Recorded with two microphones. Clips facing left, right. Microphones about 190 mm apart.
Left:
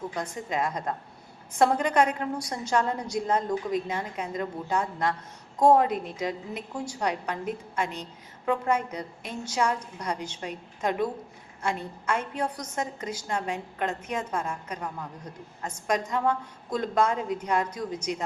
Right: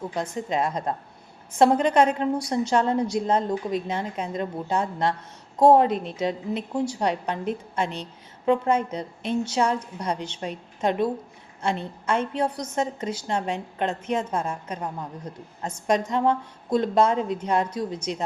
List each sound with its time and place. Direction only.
0.1 s a woman's voice: 25° right (ahead or behind)